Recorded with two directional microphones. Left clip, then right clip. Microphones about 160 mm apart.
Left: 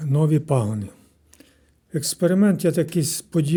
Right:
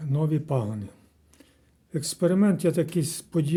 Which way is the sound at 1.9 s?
20° left (ahead or behind).